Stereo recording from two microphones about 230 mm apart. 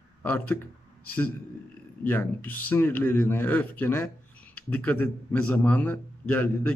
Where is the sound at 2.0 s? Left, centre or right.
Centre.